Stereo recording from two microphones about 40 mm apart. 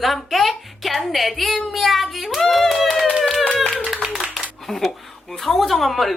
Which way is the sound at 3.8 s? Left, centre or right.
Centre.